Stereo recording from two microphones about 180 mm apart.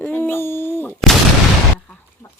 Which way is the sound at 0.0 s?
10° left (ahead or behind).